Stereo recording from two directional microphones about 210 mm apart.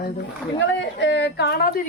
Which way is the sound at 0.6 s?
55° left (ahead or behind).